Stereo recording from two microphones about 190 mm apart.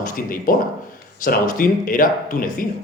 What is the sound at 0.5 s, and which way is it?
Speech, 45° left (ahead or behind).